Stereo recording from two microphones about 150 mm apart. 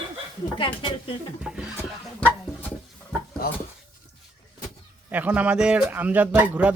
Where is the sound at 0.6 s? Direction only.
35° left (ahead or behind).